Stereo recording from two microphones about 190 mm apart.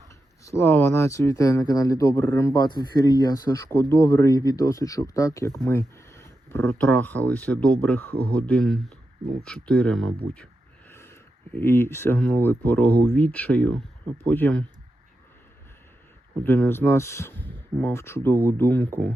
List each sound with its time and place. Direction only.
0.4 s speech: 15° left (ahead or behind)
16.4 s speech: 10° left (ahead or behind)